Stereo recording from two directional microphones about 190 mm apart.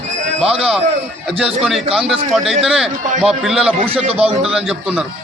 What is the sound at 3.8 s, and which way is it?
Speech, 30° right (ahead or behind).